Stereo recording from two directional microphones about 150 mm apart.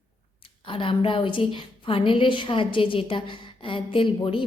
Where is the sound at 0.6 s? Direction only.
35° left (ahead or behind).